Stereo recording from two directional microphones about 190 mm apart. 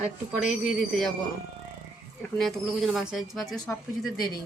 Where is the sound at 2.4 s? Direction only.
Centre (ahead or behind).